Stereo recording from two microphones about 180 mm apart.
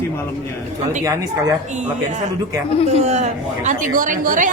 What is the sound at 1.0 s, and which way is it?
Speech, 20° right (ahead or behind).